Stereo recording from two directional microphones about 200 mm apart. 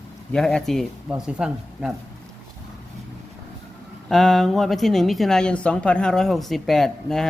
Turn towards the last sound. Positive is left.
turn(degrees=0)  # may be behind; listen again after turning